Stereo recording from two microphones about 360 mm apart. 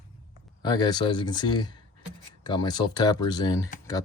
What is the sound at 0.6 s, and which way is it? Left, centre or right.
Speech, centre.